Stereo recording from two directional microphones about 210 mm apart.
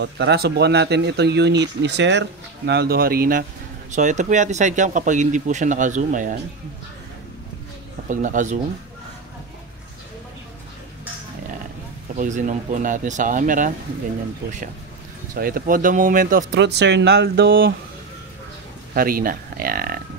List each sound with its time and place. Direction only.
0.0 s speech: 55° right (ahead or behind); by 6.3 s 35° right (ahead or behind)
8.1 s speech: 35° right (ahead or behind)
12.2 s speech: 35° right (ahead or behind)
15.3 s speech: 45° right (ahead or behind)
16.5 s speech: 55° right (ahead or behind)
18.9 s speech: 45° right (ahead or behind)